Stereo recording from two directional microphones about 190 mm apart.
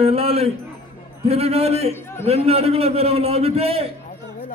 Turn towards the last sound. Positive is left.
turn(degrees=-30)  # may be behind; listen again after turning